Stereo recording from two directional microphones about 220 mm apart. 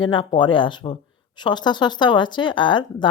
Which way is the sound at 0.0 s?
20° left (ahead or behind).